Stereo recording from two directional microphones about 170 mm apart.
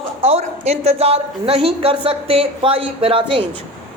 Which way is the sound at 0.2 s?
35° right (ahead or behind).